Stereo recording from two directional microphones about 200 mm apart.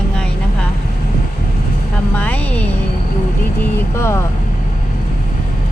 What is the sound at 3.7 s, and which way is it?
Vehicle, 15° left (ahead or behind).